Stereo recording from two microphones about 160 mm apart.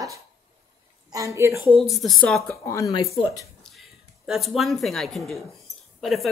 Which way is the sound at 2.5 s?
20° left (ahead or behind).